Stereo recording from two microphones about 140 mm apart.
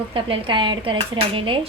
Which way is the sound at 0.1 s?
40° right (ahead or behind).